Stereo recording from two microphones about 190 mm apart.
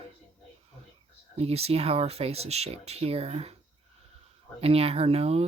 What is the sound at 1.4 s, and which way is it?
Speech, 30° right (ahead or behind).